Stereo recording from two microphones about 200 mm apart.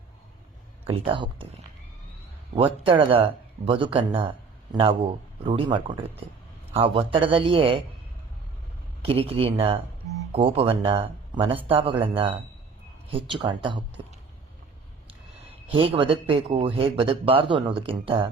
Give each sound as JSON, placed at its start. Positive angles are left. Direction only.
{"t": 0.9, "sound": "speech", "side_deg": -25}
{"t": 2.8, "sound": "speech", "side_deg": -25}
{"t": 9.0, "sound": "speech", "side_deg": -30}
{"t": 15.7, "sound": "speech", "side_deg": -25}